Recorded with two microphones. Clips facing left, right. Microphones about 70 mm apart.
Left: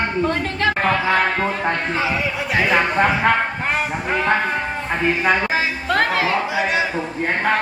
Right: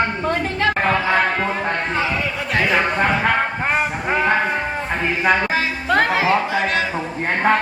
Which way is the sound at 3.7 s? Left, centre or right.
Centre.